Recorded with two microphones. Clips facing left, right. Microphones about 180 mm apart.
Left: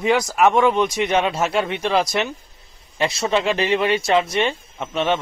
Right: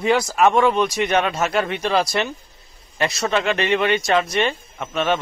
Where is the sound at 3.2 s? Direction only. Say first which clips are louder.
Left 1 dB; centre (ahead or behind).